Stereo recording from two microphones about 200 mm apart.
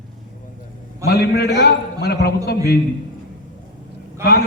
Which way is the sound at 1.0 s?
50° left (ahead or behind).